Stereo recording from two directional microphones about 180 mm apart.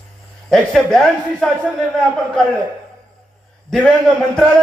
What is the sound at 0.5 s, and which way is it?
Speech, centre (ahead or behind).